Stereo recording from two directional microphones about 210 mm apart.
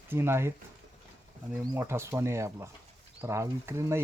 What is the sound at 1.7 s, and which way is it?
Speech, 10° right (ahead or behind).